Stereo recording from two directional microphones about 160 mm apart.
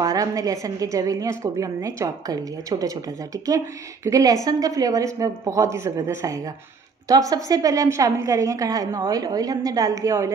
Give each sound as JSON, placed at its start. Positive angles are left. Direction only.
{"t": 0.0, "sound": "a woman's voice", "side_deg": -20}